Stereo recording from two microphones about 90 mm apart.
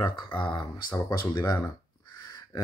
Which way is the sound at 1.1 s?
45° left (ahead or behind).